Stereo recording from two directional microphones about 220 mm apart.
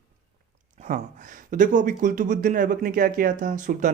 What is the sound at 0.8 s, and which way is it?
Speech, 35° right (ahead or behind).